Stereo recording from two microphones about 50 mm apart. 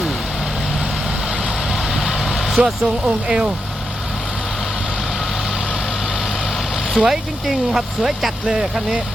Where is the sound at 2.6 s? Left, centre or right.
Right.